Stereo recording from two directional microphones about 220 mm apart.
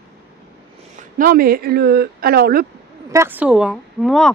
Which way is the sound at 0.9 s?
40° right (ahead or behind).